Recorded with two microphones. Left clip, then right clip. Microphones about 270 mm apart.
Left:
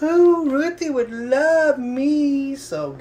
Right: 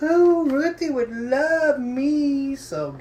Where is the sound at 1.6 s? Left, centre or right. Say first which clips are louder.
Left 2 dB; left.